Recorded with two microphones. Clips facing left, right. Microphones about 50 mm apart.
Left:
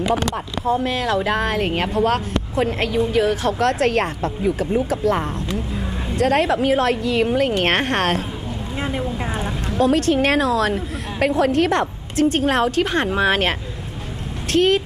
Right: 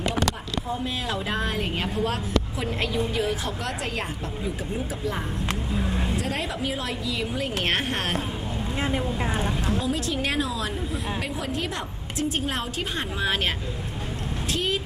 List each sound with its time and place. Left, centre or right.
0.7 s a woman's voice: left
8.7 s speech: centre
9.8 s a woman's voice: left